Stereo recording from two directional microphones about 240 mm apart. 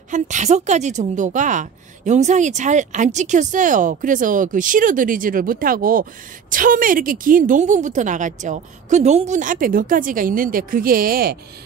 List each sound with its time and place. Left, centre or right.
0.1 s a woman's voice: right